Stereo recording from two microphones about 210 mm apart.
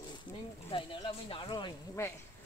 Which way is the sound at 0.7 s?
25° left (ahead or behind).